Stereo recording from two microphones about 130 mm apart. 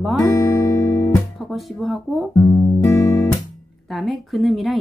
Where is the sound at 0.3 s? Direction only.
20° left (ahead or behind).